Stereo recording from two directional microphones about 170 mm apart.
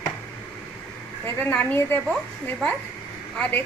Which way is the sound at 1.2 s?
10° left (ahead or behind).